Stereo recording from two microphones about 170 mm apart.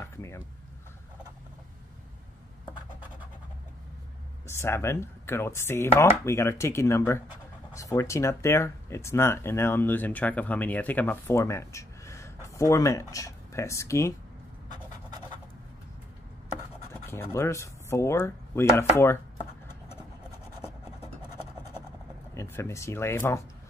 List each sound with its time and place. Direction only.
0.0 s a sound: 15° left (ahead or behind)
4.5 s speech: 15° left (ahead or behind)
17.1 s speech: 15° left (ahead or behind)
22.3 s speech: 15° left (ahead or behind)